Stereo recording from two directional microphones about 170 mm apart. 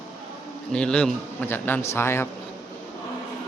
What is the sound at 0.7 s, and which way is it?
Speech, 5° left (ahead or behind).